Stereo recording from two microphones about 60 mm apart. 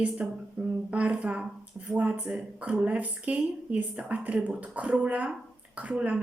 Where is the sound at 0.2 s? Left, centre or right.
Right.